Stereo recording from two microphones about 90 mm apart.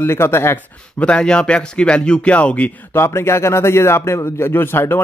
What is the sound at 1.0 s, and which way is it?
Speech, 10° left (ahead or behind).